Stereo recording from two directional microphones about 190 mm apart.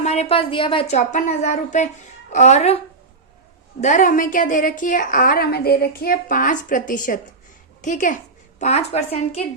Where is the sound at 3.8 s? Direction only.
40° left (ahead or behind).